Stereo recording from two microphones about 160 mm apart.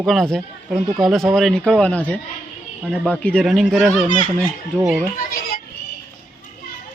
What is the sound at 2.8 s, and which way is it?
Speech, 5° right (ahead or behind).